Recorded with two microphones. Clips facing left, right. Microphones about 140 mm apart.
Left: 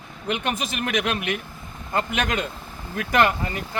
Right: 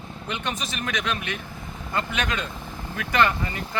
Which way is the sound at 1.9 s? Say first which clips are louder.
Left 3 dB; 45° left (ahead or behind).